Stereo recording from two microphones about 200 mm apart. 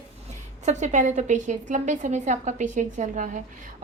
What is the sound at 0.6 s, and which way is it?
A woman's voice, 35° right (ahead or behind).